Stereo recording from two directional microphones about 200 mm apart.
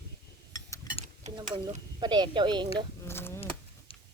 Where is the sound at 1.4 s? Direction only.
25° right (ahead or behind).